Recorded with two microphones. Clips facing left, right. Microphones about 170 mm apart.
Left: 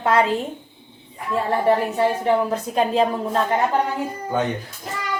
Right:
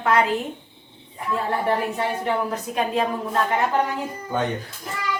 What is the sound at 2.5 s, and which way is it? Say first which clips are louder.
Speech: left 4 dB; 30° left (ahead or behind).